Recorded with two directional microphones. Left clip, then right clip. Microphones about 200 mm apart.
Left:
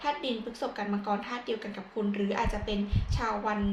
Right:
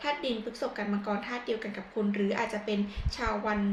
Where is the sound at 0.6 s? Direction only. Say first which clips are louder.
Even; 20° left (ahead or behind).